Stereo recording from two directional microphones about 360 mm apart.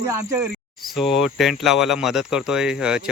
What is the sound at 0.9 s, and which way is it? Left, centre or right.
Speech, centre.